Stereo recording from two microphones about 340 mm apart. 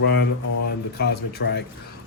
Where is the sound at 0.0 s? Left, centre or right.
Left.